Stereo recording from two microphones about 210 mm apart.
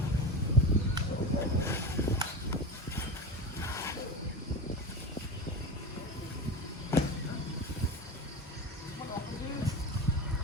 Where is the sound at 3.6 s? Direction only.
15° left (ahead or behind).